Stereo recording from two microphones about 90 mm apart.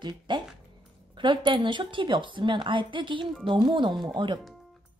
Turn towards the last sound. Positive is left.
turn(degrees=-60)  # may be behind; listen again after turning